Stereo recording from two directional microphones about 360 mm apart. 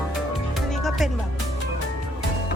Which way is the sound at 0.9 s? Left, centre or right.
Centre.